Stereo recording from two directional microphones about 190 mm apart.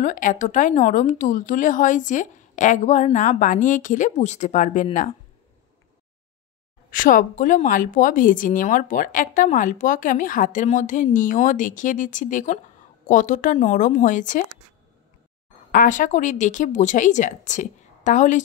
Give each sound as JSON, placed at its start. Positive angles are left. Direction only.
{"t": 0.0, "sound": "speech", "side_deg": 40}
{"t": 6.9, "sound": "a woman's voice", "side_deg": 45}
{"t": 15.7, "sound": "speech", "side_deg": 45}